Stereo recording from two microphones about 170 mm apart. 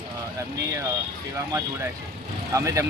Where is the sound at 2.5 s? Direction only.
15° right (ahead or behind).